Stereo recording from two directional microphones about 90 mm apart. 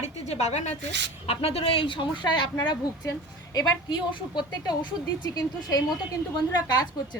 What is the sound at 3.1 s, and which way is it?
A woman's voice, 45° left (ahead or behind).